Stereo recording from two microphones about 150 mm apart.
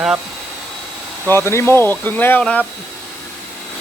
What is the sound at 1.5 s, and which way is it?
Speech, 15° left (ahead or behind).